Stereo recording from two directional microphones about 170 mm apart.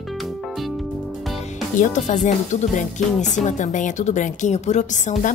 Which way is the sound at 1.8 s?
45° left (ahead or behind).